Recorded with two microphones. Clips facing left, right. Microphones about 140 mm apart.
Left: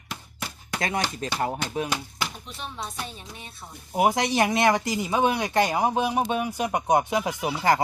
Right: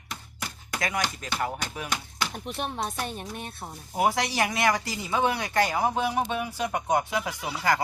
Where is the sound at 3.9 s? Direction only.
20° left (ahead or behind).